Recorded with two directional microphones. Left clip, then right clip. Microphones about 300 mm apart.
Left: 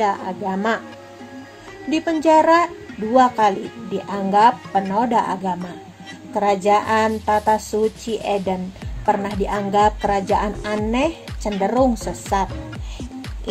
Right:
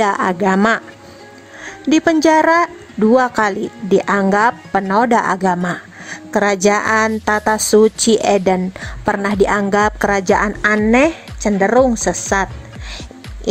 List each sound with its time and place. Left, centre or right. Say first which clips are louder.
0.0 s speech: right 6 dB; right
1.9 s a woman's voice: right 5 dB; right